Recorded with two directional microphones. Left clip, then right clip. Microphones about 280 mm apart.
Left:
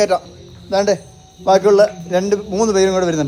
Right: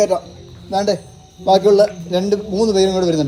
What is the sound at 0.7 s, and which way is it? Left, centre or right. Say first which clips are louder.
Speech: left 2 dB; left.